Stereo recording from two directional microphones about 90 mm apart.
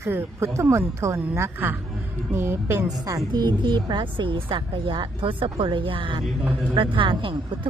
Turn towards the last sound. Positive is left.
turn(degrees=-70)  # may be behind; listen again after turning